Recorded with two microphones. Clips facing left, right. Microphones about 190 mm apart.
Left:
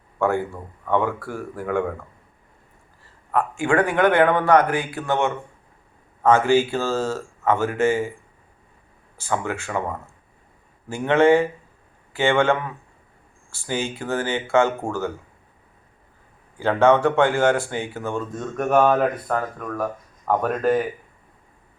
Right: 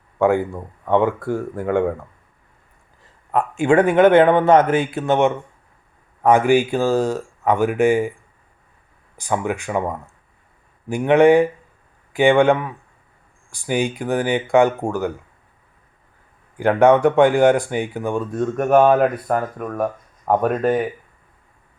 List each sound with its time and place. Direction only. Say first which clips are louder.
0.2 s a man's voice: right 5 dB; 20° right (ahead or behind)
3.3 s a man's voice: right 4 dB; 20° right (ahead or behind)
9.1 s speech: right 3 dB; 15° right (ahead or behind)
16.6 s speech: right 3 dB; 15° right (ahead or behind)
19.6 s speech: right 4 dB; 25° right (ahead or behind)
20.6 s speech: left 1 dB; centre (ahead or behind)